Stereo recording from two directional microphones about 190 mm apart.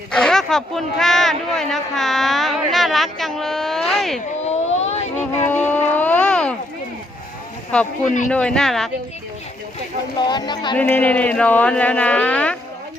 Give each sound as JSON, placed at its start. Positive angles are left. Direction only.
{"t": 0.1, "sound": "speech", "side_deg": 5}
{"t": 4.4, "sound": "a sound", "side_deg": 35}
{"t": 5.4, "sound": "a sound", "side_deg": 10}
{"t": 8.3, "sound": "speech", "side_deg": 5}
{"t": 10.2, "sound": "speech", "side_deg": 20}
{"t": 10.8, "sound": "speech", "side_deg": 10}